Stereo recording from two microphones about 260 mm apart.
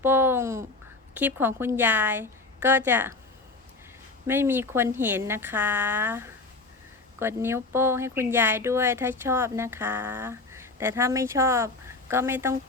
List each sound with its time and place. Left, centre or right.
0.0 s speech: centre
4.3 s speech: centre